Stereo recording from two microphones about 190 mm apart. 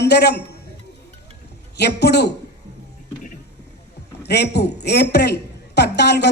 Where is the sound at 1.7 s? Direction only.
60° left (ahead or behind).